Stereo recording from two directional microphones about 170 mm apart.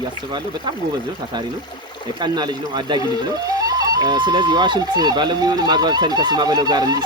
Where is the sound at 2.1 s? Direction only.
25° right (ahead or behind).